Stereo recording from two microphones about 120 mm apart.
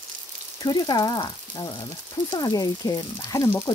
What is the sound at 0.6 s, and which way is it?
Speech, 35° left (ahead or behind).